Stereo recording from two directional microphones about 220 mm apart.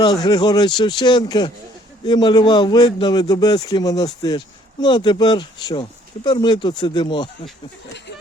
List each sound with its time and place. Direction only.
0.0 s a man's voice: 20° left (ahead or behind)